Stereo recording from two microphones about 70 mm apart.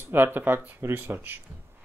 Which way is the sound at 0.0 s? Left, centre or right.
Right.